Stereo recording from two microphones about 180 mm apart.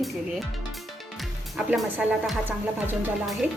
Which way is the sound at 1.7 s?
5° right (ahead or behind).